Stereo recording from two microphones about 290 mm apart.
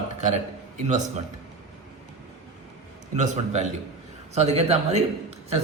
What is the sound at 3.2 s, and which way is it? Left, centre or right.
A man's voice, right.